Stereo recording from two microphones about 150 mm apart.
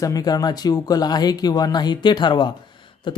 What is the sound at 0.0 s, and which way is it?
Speech, 25° left (ahead or behind).